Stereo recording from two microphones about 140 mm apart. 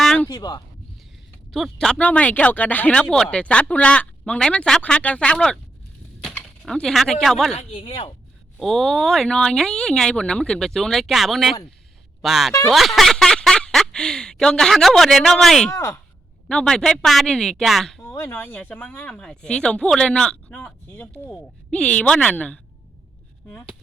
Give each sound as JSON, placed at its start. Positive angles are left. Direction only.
{"t": 0.0, "sound": "a sound", "side_deg": 5}
{"t": 0.3, "sound": "speech", "side_deg": 30}
{"t": 1.5, "sound": "speech", "side_deg": 0}
{"t": 7.5, "sound": "speech", "side_deg": 40}
{"t": 8.5, "sound": "speech", "side_deg": 0}
{"t": 12.7, "sound": "a sound", "side_deg": 0}
{"t": 15.7, "sound": "speech", "side_deg": 20}
{"t": 16.5, "sound": "speech", "side_deg": 5}
{"t": 18.0, "sound": "speech", "side_deg": 20}